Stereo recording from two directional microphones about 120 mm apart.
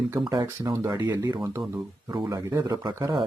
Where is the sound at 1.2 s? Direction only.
40° right (ahead or behind).